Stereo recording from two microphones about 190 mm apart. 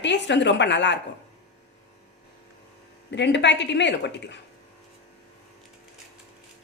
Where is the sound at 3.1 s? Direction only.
65° left (ahead or behind).